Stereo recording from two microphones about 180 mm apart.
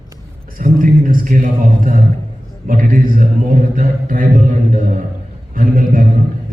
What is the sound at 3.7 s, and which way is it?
A man's voice, 50° right (ahead or behind).